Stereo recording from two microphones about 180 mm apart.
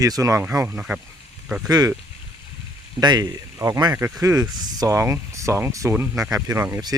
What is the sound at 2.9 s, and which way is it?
Speech, 20° right (ahead or behind).